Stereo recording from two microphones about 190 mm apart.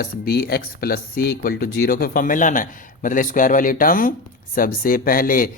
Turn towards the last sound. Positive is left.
turn(degrees=50)  # may be behind; listen again after turning